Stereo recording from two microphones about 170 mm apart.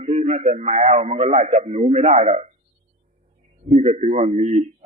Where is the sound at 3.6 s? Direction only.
35° right (ahead or behind).